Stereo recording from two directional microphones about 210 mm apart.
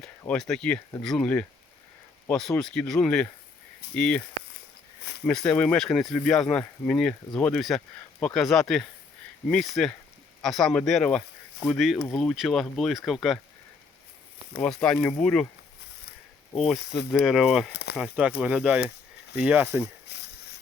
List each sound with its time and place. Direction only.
0.0 s speech: 5° left (ahead or behind)
5.2 s speech: 5° left (ahead or behind)
14.6 s speech: 5° left (ahead or behind)
16.7 s speech: 50° left (ahead or behind)
17.1 s speech: centre (ahead or behind)
17.7 s speech: 55° left (ahead or behind)
17.9 s speech: 5° right (ahead or behind)